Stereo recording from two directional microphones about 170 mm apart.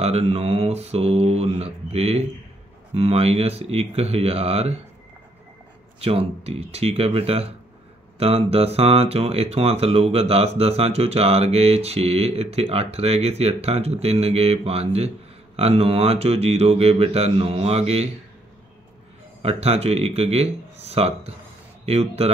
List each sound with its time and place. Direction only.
0.0 s speech: 40° right (ahead or behind)
5.9 s speech: 35° right (ahead or behind)
19.4 s speech: 35° right (ahead or behind)